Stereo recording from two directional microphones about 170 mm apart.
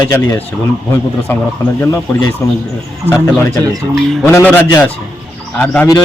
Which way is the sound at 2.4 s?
15° left (ahead or behind).